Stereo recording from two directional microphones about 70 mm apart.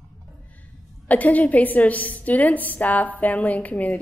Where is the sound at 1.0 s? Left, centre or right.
Left.